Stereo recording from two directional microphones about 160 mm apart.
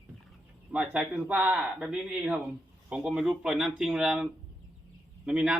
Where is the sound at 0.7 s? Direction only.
5° right (ahead or behind).